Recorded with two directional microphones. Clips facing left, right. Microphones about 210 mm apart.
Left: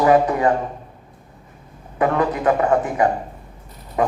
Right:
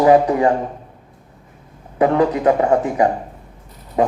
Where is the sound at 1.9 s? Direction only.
30° right (ahead or behind).